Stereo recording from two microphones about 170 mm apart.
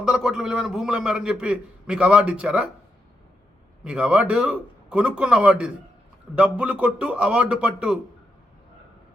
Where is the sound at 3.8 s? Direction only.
5° right (ahead or behind).